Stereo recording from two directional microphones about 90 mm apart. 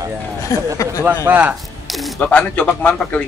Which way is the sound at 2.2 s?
15° left (ahead or behind).